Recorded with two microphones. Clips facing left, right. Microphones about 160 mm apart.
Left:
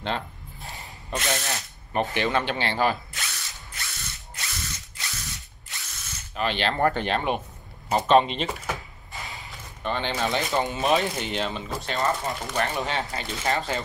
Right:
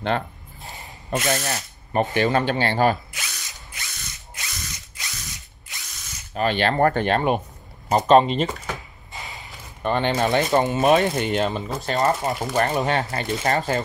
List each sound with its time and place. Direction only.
1.2 s ratchet: 40° right (ahead or behind)
2.1 s speech: 45° right (ahead or behind)
3.2 s ratchet: 20° right (ahead or behind)
6.3 s speech: 45° right (ahead or behind)
9.8 s speech: 50° right (ahead or behind)